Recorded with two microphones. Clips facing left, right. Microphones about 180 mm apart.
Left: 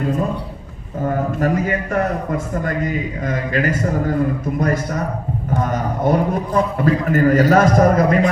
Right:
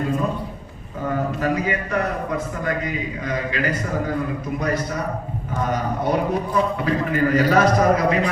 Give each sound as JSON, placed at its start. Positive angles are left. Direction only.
{"t": 1.0, "sound": "a man's voice", "side_deg": 45}
{"t": 4.6, "sound": "a man's voice", "side_deg": 45}